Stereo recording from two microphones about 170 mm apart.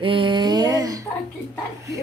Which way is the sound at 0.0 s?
30° right (ahead or behind).